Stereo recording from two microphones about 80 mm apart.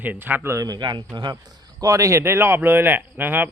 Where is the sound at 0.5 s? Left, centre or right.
Right.